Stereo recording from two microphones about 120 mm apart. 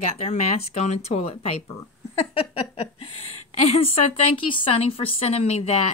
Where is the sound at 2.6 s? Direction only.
50° left (ahead or behind).